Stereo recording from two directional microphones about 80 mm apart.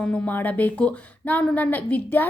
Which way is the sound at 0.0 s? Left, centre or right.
Centre.